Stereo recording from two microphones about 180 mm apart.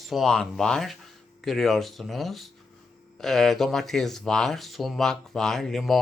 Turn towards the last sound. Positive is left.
turn(degrees=0)  # may be behind; listen again after turning